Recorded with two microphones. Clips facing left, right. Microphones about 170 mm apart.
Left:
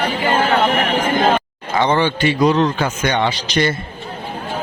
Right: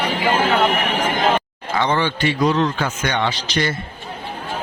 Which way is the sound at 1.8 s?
20° left (ahead or behind).